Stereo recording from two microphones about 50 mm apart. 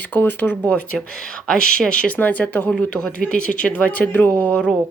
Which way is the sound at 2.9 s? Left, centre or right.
Centre.